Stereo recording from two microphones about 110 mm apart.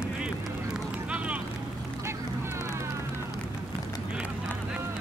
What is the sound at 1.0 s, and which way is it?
Boat, 10° right (ahead or behind).